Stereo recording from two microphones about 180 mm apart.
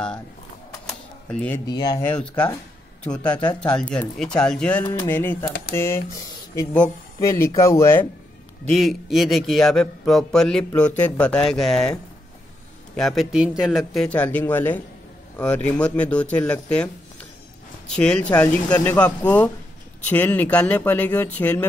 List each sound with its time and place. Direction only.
0.8 s typewriter: 5° left (ahead or behind)
1.7 s speech: 20° left (ahead or behind)
3.3 s speech: 25° left (ahead or behind)
3.9 s speech: 5° left (ahead or behind)
5.4 s speech: 55° left (ahead or behind)
5.8 s speech: 15° left (ahead or behind)
8.7 s a man's voice: centre (ahead or behind)
12.9 s a man's voice: centre (ahead or behind)